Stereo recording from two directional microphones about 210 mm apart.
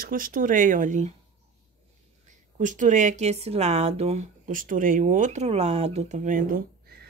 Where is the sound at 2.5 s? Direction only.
35° right (ahead or behind).